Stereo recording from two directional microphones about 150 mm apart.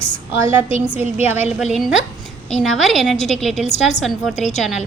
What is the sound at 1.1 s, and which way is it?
Speech, 15° right (ahead or behind).